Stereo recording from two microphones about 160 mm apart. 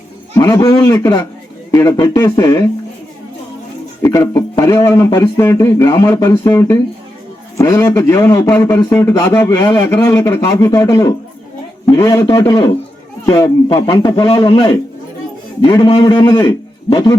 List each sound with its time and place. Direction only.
0.4 s a man's voice: 20° left (ahead or behind)
4.0 s a man's voice: 20° left (ahead or behind)